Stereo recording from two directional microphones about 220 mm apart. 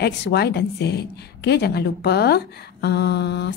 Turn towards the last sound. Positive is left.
turn(degrees=50)  # may be behind; listen again after turning